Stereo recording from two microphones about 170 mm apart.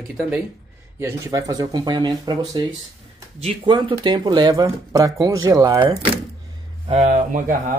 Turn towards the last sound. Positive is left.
turn(degrees=-50)  # may be behind; listen again after turning